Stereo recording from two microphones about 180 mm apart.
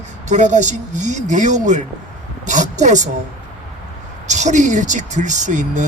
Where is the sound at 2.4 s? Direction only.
40° right (ahead or behind).